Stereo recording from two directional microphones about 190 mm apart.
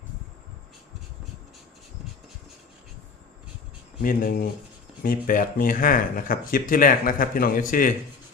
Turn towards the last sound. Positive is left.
turn(degrees=45)  # may be behind; listen again after turning